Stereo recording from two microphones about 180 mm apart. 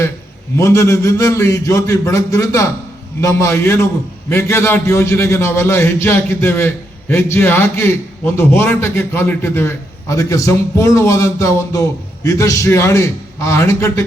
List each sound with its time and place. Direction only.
0.5 s a man's voice: 15° left (ahead or behind)